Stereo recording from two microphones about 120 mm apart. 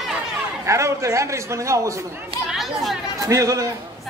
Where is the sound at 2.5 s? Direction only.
Centre (ahead or behind).